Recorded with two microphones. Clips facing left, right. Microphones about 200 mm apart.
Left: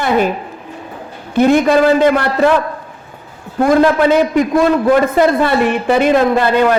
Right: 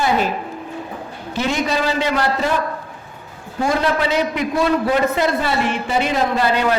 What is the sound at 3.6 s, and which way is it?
A man's voice, 50° left (ahead or behind).